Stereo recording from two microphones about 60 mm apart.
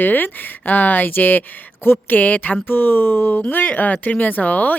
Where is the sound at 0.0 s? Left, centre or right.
Left.